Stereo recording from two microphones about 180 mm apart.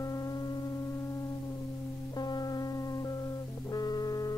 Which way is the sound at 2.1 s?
25° left (ahead or behind).